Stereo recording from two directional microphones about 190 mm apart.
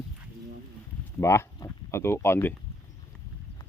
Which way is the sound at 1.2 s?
15° left (ahead or behind).